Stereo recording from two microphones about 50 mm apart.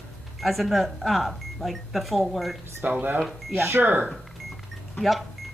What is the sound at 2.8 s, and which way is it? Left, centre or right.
Speech, right.